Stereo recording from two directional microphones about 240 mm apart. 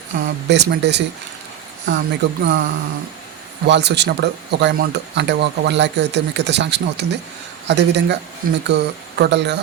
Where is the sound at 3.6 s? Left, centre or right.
Right.